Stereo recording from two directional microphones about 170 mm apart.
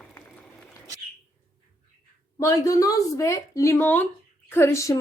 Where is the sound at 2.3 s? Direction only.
20° left (ahead or behind).